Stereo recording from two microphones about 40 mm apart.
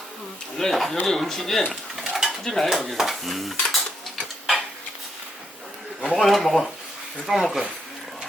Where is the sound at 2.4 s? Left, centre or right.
Centre.